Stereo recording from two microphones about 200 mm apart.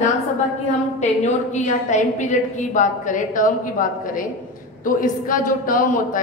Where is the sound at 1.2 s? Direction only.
35° left (ahead or behind).